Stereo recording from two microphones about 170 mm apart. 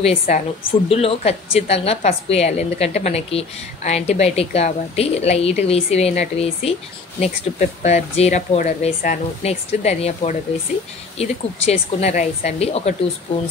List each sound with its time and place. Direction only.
0.0 s a woman's voice: 35° left (ahead or behind)